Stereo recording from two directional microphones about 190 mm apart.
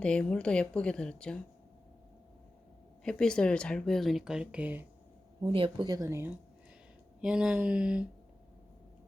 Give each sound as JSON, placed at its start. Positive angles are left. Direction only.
{"t": 0.0, "sound": "speech", "side_deg": 5}
{"t": 3.0, "sound": "speech", "side_deg": 5}
{"t": 5.4, "sound": "speech", "side_deg": -25}